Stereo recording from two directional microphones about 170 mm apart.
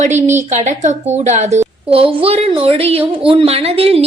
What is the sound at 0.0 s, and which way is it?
A woman's voice, 45° right (ahead or behind).